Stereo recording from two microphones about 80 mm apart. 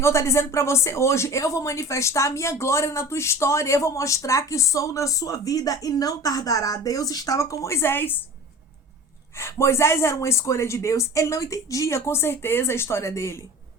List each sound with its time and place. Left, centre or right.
0.0 s speech: left
9.3 s speech: left